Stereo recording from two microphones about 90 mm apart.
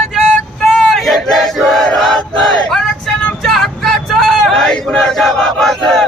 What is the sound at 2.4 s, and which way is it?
Vehicle, 5° left (ahead or behind).